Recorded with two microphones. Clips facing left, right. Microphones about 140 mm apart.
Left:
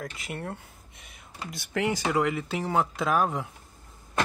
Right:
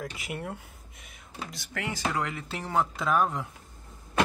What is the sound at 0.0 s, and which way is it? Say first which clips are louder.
Speech: even; 10° right (ahead or behind).